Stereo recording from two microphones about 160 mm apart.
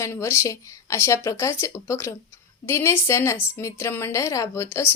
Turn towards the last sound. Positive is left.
turn(degrees=15)  # may be behind; listen again after turning